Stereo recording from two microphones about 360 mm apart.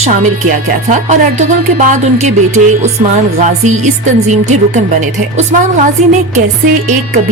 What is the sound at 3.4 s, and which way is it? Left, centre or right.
A woman's voice, centre.